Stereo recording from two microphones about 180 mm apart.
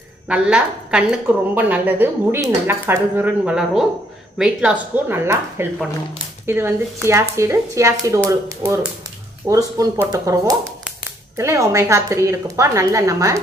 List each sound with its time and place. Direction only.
0.3 s a woman's voice: 5° right (ahead or behind)